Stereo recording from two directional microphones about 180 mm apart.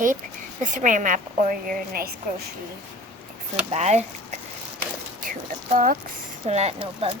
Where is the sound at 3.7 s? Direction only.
40° right (ahead or behind).